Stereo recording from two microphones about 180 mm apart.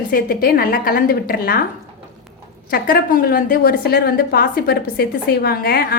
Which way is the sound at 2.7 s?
50° left (ahead or behind).